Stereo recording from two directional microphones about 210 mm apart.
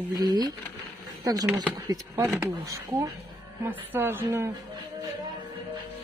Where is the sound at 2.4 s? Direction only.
15° right (ahead or behind).